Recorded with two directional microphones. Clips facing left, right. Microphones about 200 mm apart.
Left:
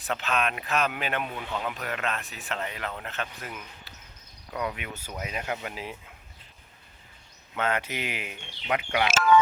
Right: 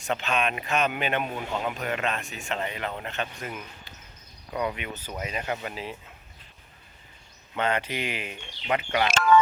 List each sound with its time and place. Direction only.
0.0 s a man's voice: centre (ahead or behind)
1.5 s a man's voice: 20° right (ahead or behind)
1.8 s a man's voice: centre (ahead or behind)
7.5 s a man's voice: 5° left (ahead or behind)